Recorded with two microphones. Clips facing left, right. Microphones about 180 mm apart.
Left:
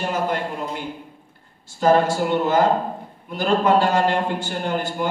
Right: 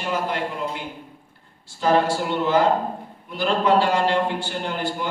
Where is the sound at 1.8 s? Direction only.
45° left (ahead or behind).